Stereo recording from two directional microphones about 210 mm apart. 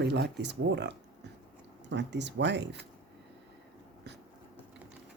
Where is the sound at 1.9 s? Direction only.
55° right (ahead or behind).